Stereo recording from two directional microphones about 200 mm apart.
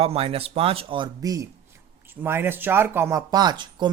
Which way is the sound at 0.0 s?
30° right (ahead or behind).